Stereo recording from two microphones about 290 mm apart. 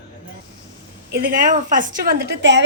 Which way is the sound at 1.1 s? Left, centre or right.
Right.